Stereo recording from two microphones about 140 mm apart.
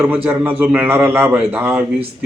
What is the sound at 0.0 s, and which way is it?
Speech, 15° right (ahead or behind).